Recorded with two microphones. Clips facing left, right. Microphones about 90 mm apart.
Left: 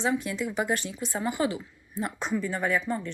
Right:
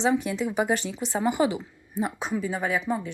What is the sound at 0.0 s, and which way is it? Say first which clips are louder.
Speech: right 4 dB; 20° right (ahead or behind).